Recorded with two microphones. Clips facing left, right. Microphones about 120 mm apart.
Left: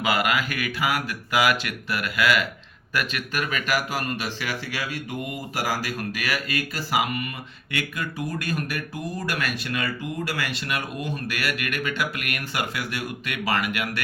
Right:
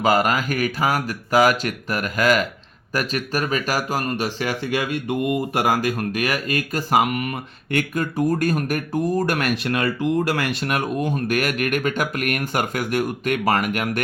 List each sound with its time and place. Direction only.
0.0 s speech: 40° right (ahead or behind)